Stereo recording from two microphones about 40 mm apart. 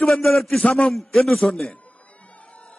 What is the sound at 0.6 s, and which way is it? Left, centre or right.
Speech, left.